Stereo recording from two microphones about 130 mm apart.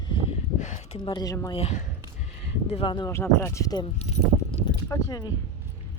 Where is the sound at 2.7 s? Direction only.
40° left (ahead or behind).